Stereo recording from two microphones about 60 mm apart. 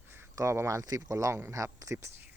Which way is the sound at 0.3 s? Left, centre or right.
Right.